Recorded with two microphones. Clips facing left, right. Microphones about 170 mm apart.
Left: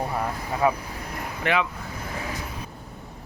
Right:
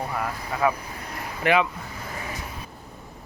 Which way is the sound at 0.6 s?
20° left (ahead or behind).